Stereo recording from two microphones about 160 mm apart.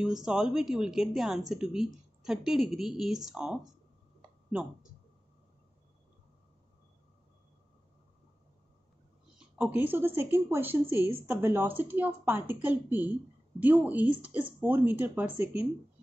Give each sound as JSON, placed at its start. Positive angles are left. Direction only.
{"t": 0.0, "sound": "speech", "side_deg": -5}
{"t": 9.4, "sound": "speech", "side_deg": -10}